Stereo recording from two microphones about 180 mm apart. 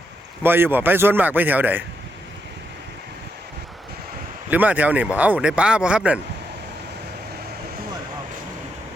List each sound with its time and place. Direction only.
0.4 s speech: 10° right (ahead or behind)
4.5 s speech: 10° right (ahead or behind)